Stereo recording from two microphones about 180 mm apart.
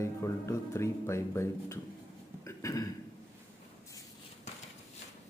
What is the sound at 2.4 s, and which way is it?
Burping, 20° left (ahead or behind).